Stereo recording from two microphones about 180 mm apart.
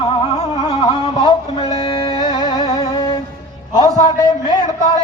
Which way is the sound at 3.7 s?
20° left (ahead or behind).